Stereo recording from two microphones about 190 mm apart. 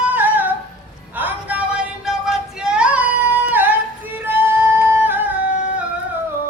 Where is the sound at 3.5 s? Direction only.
10° right (ahead or behind).